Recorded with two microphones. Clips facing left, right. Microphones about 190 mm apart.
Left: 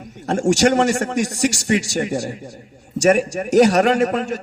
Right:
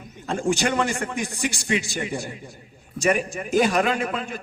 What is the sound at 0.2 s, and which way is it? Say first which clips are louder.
A man's voice: left 7 dB; 75° left (ahead or behind).